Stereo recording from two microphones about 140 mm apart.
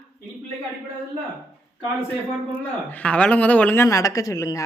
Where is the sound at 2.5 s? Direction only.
10° left (ahead or behind).